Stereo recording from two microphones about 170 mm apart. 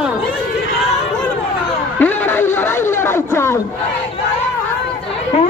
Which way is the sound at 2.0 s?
10° left (ahead or behind).